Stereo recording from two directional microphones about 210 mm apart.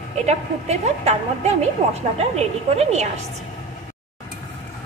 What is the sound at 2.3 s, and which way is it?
Speech, 30° right (ahead or behind).